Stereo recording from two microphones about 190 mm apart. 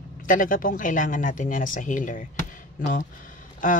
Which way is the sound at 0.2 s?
45° left (ahead or behind).